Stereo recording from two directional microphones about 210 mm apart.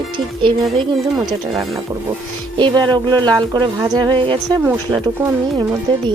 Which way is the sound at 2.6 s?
20° right (ahead or behind).